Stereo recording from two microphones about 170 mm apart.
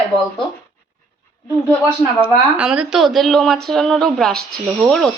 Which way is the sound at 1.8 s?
5° right (ahead or behind).